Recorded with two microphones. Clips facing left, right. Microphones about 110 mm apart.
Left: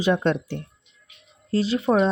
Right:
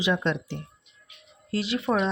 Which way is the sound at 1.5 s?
35° left (ahead or behind).